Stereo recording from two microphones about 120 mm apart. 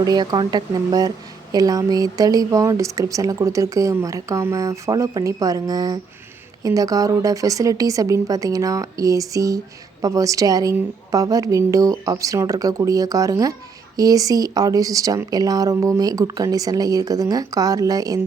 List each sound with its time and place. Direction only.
0.0 s speech: 35° right (ahead or behind)